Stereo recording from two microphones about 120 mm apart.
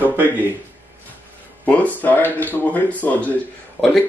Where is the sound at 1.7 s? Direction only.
15° left (ahead or behind).